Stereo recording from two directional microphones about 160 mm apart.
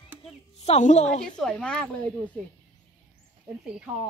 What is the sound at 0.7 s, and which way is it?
Speech, 45° left (ahead or behind).